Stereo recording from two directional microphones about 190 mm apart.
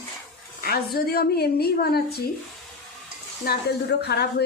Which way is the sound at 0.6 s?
55° left (ahead or behind).